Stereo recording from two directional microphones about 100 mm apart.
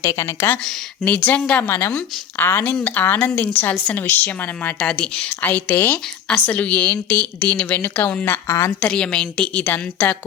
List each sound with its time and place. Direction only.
0.0 s a woman's voice: 30° left (ahead or behind)
8.4 s a woman's voice: 35° left (ahead or behind)
8.8 s speech: 10° left (ahead or behind)